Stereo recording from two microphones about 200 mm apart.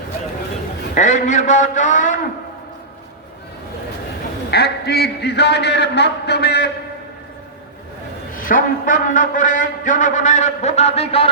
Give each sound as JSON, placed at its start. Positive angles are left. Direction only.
{"t": 0.9, "sound": "a man's voice", "side_deg": 35}
{"t": 4.5, "sound": "a man's voice", "side_deg": 55}
{"t": 8.4, "sound": "a man's voice", "side_deg": 40}